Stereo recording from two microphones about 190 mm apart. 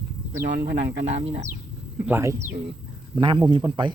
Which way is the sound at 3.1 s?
25° right (ahead or behind).